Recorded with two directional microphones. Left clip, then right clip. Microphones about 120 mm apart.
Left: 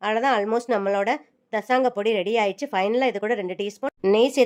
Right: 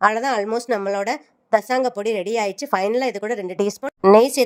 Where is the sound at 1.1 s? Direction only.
45° right (ahead or behind).